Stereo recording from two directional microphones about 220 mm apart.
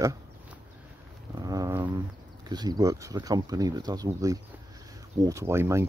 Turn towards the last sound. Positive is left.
turn(degrees=-10)  # may be behind; listen again after turning